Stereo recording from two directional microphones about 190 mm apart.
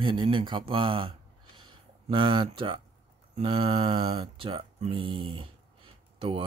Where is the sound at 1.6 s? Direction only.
25° right (ahead or behind).